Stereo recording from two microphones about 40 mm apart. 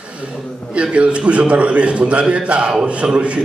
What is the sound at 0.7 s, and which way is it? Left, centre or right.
A man's voice, right.